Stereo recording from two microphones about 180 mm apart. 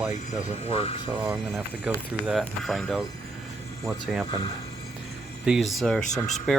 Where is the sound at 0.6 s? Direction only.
35° left (ahead or behind).